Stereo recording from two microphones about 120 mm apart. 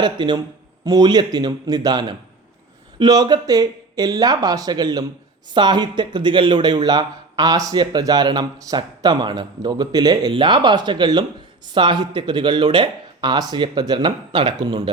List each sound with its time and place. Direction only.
0.0 s speech: 40° right (ahead or behind)